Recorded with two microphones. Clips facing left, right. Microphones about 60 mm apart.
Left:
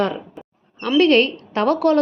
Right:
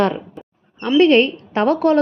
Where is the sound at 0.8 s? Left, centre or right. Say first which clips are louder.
Right 2 dB; centre.